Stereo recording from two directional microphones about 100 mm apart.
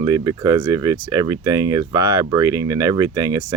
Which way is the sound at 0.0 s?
40° right (ahead or behind).